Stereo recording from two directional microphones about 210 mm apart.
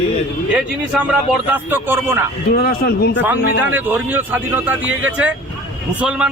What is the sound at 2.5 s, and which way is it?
Speech, 50° left (ahead or behind).